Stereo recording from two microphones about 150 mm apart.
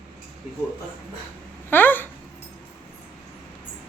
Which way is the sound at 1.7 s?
15° left (ahead or behind).